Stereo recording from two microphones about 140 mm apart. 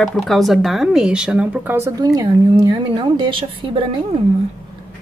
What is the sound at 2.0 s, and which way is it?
A woman's voice, 30° right (ahead or behind).